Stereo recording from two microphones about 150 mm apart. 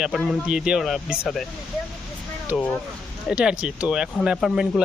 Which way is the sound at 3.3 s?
5° right (ahead or behind).